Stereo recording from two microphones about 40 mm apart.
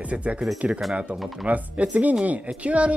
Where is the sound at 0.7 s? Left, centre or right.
Centre.